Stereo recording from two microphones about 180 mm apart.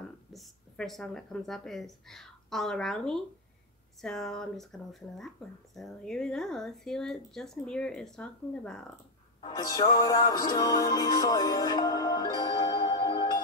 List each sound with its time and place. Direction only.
0.3 s speech: centre (ahead or behind)
5.8 s speech: centre (ahead or behind)
9.4 s music: 20° left (ahead or behind)